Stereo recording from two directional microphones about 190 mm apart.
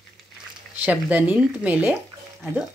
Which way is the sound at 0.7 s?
10° right (ahead or behind).